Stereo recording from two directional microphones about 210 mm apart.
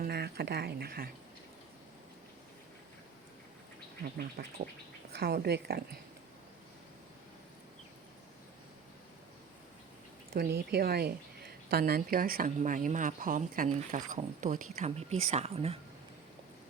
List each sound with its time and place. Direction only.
0.0 s speech: 50° right (ahead or behind)
4.2 s speech: 45° right (ahead or behind)
10.3 s a woman's voice: 50° right (ahead or behind); by 15.8 s 30° right (ahead or behind)